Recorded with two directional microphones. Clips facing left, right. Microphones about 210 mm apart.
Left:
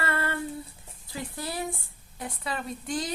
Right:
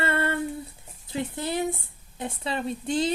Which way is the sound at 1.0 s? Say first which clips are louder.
Right 6 dB; 25° right (ahead or behind).